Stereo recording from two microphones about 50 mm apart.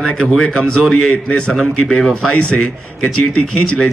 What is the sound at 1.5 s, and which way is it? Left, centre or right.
Speech, centre.